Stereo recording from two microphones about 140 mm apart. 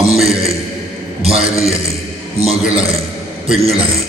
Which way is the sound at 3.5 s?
45° right (ahead or behind).